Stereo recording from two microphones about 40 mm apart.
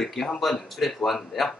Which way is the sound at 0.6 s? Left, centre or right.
Centre.